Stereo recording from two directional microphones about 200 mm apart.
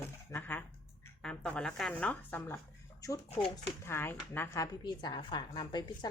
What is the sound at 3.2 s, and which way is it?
Speech, 30° left (ahead or behind).